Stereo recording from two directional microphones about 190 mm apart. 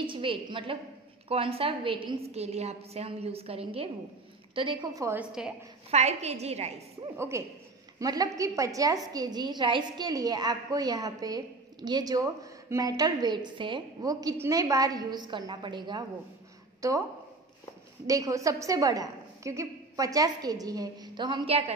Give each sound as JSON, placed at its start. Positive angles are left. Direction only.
{"t": 0.0, "sound": "a woman's voice", "side_deg": -25}
{"t": 5.9, "sound": "a woman's voice", "side_deg": -35}
{"t": 7.2, "sound": "a woman's voice", "side_deg": -15}
{"t": 18.0, "sound": "a woman's voice", "side_deg": -15}